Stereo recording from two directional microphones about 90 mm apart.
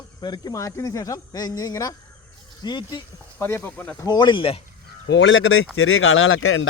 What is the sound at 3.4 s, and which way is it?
Speech, 30° left (ahead or behind).